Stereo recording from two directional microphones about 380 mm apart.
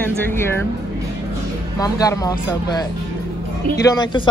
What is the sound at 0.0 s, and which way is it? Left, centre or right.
Speech, centre.